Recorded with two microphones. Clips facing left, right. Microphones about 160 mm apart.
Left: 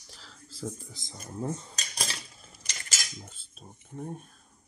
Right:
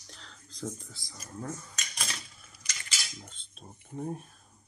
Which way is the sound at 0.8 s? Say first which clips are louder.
Left 4 dB; 20° left (ahead or behind).